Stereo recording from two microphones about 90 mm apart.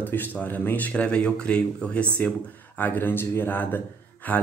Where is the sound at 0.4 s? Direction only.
20° left (ahead or behind).